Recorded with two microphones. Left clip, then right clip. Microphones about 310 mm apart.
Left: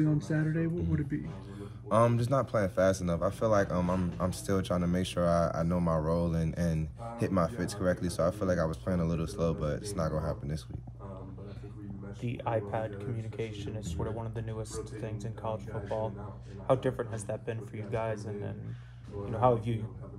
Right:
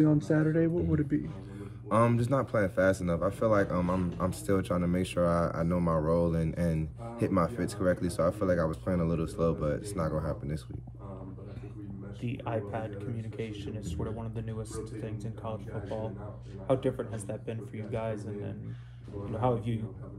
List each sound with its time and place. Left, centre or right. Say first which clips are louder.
0.0 s speech: right 5 dB; centre
12.2 s a man's voice: left 2 dB; left